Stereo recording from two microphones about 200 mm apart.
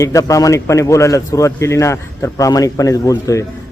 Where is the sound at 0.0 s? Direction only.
15° left (ahead or behind).